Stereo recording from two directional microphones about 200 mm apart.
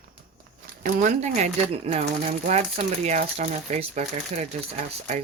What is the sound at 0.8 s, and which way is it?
Speech, 40° right (ahead or behind).